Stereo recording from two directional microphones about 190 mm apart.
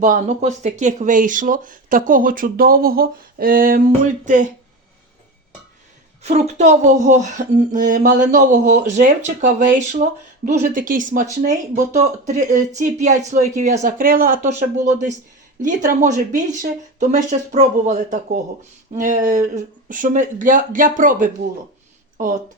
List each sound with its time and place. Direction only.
0.0 s speech: 40° right (ahead or behind)
6.2 s speech: 35° right (ahead or behind)